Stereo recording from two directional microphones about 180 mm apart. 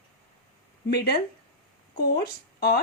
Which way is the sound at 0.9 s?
65° left (ahead or behind).